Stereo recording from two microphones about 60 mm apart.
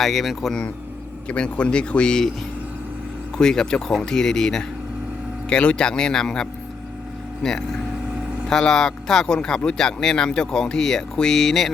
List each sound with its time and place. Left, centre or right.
0.0 s speech: centre
1.3 s speech: centre
3.3 s speech: centre